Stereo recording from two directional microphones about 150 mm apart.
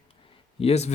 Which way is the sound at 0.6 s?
45° left (ahead or behind).